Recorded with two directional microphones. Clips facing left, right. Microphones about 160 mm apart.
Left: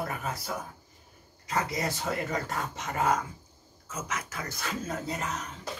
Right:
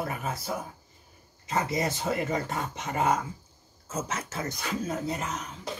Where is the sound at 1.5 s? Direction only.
25° right (ahead or behind).